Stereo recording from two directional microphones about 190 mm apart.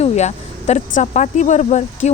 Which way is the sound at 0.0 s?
35° left (ahead or behind).